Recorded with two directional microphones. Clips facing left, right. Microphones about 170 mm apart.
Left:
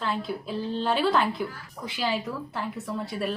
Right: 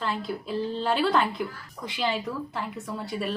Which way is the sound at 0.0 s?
Centre (ahead or behind).